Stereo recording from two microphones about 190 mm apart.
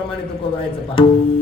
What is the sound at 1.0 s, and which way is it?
Speech, 30° left (ahead or behind).